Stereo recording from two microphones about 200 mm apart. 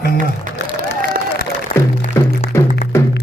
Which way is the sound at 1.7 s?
45° left (ahead or behind).